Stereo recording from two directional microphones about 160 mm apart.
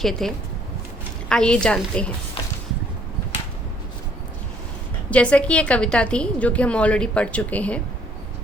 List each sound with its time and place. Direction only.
0.0 s a woman's voice: centre (ahead or behind)
5.1 s a woman's voice: 5° left (ahead or behind)